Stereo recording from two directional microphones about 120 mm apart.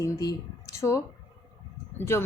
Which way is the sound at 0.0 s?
30° left (ahead or behind).